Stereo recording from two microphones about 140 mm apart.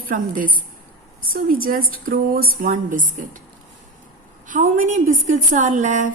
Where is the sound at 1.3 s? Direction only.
90° right.